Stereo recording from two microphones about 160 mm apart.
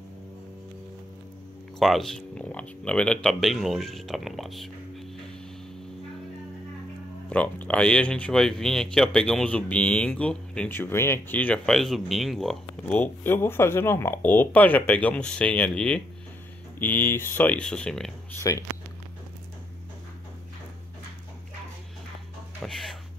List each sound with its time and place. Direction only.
1.8 s speech: centre (ahead or behind)
7.2 s speech: 10° left (ahead or behind)
18.4 s speech: 20° left (ahead or behind)
22.6 s speech: centre (ahead or behind)